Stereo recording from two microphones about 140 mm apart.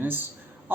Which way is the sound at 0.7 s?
15° right (ahead or behind).